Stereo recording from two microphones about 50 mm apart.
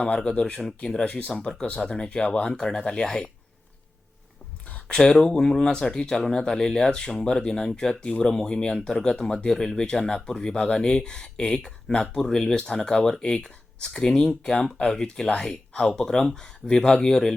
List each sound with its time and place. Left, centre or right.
0.0 s speech: centre
4.9 s speech: centre